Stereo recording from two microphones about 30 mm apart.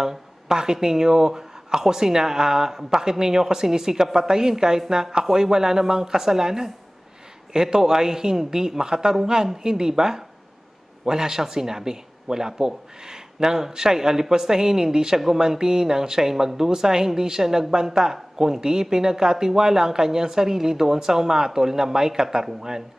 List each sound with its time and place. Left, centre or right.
0.0 s speech: centre